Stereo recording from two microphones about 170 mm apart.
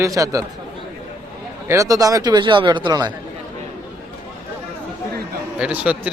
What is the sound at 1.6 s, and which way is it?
A man's voice, 20° right (ahead or behind).